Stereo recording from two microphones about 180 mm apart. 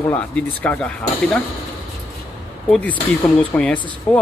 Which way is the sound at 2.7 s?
10° left (ahead or behind).